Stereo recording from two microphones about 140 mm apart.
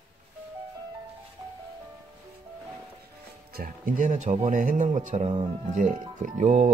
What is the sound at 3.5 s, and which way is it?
Speech, 85° right.